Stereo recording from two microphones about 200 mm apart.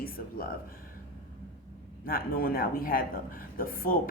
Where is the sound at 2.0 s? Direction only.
45° left (ahead or behind).